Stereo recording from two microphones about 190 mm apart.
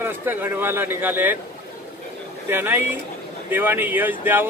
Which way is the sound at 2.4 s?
10° right (ahead or behind).